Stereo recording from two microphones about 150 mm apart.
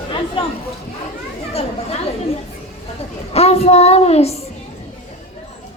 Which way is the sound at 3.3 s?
45° left (ahead or behind).